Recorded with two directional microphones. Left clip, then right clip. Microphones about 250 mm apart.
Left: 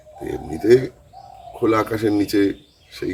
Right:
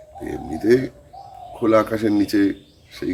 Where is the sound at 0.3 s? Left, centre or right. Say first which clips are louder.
Left 2 dB; centre.